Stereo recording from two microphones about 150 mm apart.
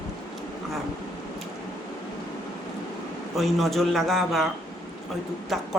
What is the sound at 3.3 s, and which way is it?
A man's voice, centre (ahead or behind).